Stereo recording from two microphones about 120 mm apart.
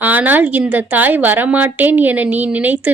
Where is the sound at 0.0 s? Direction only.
15° right (ahead or behind).